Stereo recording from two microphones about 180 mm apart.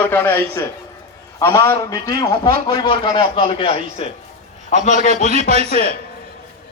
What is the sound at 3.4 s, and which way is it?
A man's voice, 30° left (ahead or behind).